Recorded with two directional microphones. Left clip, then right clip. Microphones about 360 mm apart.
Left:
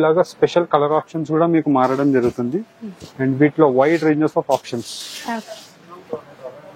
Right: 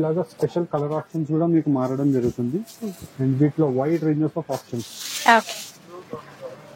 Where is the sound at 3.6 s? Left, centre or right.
Centre.